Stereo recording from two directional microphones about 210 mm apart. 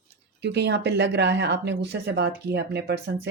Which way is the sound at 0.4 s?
55° right (ahead or behind).